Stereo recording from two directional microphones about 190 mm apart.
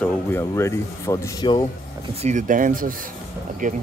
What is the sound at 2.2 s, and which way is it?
Speech, 40° right (ahead or behind).